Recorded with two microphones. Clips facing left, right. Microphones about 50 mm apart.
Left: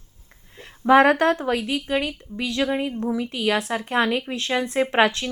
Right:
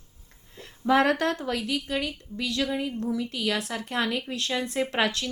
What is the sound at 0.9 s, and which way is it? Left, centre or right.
A woman's voice, left.